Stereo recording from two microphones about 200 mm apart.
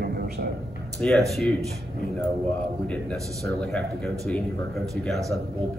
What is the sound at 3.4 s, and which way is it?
A man's voice, 5° left (ahead or behind).